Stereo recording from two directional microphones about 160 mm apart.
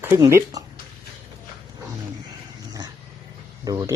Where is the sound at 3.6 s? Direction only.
25° right (ahead or behind).